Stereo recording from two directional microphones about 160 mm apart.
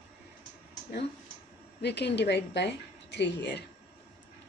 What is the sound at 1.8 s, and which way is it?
A woman's voice, 90° left.